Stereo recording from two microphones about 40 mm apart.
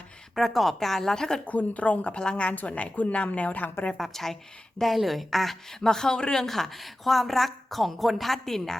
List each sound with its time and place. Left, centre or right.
0.3 s speech: centre
1.5 s a woman's voice: left
2.6 s a woman's voice: left
3.9 s speech: centre
5.8 s speech: centre
6.4 s speech: centre